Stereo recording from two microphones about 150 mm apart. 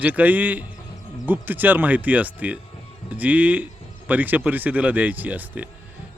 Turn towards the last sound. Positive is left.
turn(degrees=-10)  # may be behind; listen again after turning